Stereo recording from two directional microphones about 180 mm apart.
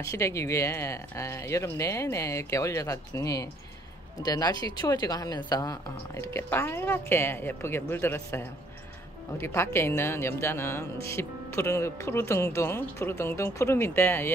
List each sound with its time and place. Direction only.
0.0 s speech: 15° left (ahead or behind)